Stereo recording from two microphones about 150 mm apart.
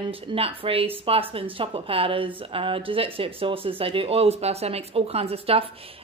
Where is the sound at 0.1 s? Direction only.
35° right (ahead or behind).